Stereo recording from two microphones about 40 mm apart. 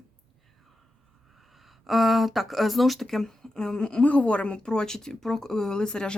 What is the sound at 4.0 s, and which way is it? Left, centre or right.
Speech, left.